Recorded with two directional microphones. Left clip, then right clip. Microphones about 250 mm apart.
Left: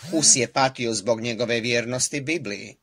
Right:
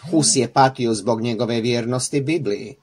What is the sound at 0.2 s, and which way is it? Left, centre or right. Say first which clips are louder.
Speech: right 4 dB; left.